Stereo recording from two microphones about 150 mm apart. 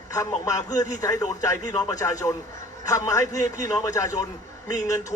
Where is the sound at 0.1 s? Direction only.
25° left (ahead or behind).